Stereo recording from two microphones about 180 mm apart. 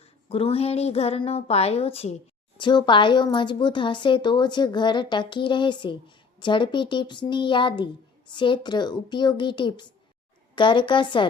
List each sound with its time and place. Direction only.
0.3 s a woman's voice: 35° left (ahead or behind)